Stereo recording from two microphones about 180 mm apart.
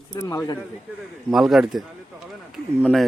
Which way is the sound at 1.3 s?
Centre (ahead or behind).